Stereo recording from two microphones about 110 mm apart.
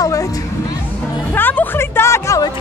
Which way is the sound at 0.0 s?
30° left (ahead or behind).